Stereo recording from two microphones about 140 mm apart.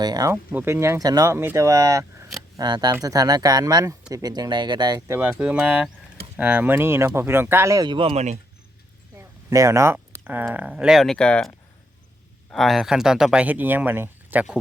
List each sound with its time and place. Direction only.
0.0 s speech: 25° right (ahead or behind)
2.6 s speech: 30° right (ahead or behind)
7.9 s speech: 40° right (ahead or behind)
9.1 s speech: 20° right (ahead or behind)